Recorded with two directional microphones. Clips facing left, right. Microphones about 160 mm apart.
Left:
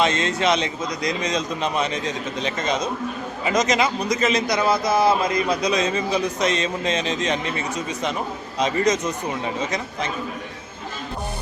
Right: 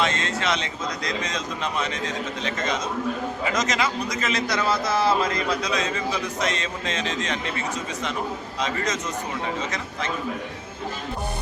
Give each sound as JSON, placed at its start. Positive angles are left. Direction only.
{"t": 0.0, "sound": "a man's voice", "side_deg": 20}
{"t": 8.5, "sound": "a man's voice", "side_deg": 20}